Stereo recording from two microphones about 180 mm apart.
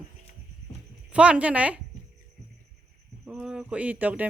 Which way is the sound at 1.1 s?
5° right (ahead or behind).